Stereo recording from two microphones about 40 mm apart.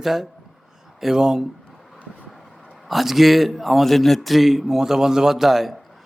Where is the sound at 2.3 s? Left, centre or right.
Centre.